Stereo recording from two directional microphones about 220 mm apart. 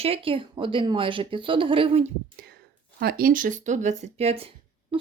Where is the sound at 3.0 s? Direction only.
45° right (ahead or behind).